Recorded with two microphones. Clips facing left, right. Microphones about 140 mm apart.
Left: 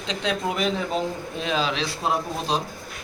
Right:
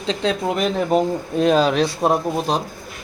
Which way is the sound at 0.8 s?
50° right (ahead or behind).